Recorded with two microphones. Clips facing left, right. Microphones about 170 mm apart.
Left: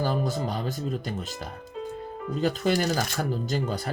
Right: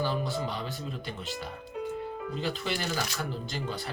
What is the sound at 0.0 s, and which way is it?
Speech, 45° left (ahead or behind).